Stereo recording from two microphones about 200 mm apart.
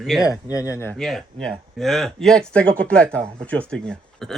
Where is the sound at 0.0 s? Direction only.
Centre (ahead or behind).